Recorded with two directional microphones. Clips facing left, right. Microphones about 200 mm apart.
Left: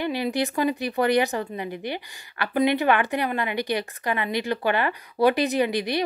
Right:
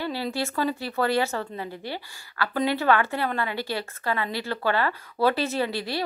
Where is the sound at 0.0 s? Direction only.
15° left (ahead or behind).